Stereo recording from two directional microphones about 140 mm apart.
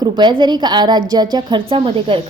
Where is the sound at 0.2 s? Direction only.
35° right (ahead or behind).